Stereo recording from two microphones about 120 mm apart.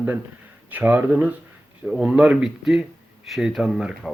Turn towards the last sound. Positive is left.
turn(degrees=-5)  # may be behind; listen again after turning